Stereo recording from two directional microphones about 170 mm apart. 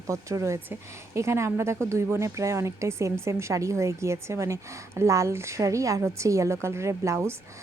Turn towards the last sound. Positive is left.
turn(degrees=-15)  # may be behind; listen again after turning